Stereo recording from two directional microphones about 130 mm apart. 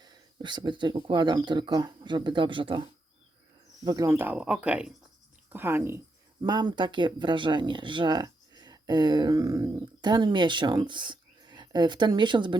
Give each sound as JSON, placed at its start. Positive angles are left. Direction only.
{"t": 0.0, "sound": "speech", "side_deg": -35}
{"t": 3.8, "sound": "speech", "side_deg": -30}
{"t": 4.1, "sound": "speech", "side_deg": -15}
{"t": 6.4, "sound": "speech", "side_deg": -35}